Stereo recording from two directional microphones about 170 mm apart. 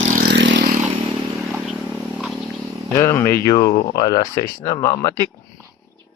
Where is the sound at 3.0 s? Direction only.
15° left (ahead or behind).